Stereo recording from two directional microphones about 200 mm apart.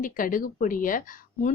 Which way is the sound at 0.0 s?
45° left (ahead or behind).